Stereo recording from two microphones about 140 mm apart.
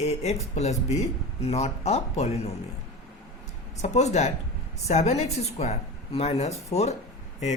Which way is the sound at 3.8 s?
55° left (ahead or behind).